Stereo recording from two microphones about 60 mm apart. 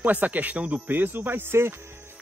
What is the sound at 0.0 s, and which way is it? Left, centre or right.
Speech, right.